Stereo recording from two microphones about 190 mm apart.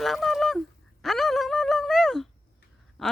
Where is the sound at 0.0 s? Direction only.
Centre (ahead or behind).